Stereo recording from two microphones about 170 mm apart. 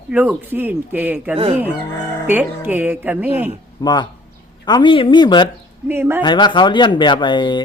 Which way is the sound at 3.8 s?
25° left (ahead or behind).